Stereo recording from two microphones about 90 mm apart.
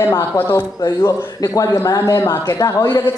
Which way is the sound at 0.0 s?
25° left (ahead or behind).